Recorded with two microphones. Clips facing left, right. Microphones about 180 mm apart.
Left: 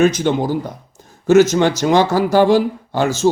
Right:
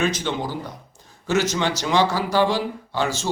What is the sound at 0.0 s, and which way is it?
A man's voice, 45° left (ahead or behind).